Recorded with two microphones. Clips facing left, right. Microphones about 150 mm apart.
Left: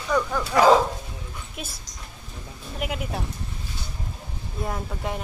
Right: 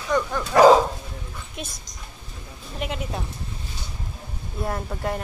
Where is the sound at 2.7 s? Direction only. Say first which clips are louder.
Even; 5° left (ahead or behind).